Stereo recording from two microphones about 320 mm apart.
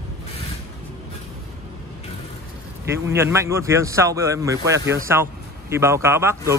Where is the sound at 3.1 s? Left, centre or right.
Centre.